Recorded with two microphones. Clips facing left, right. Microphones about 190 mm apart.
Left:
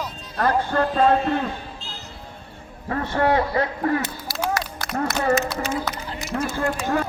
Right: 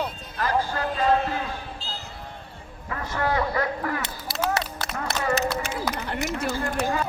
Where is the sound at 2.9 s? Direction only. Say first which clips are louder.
Left 6 dB; 35° left (ahead or behind).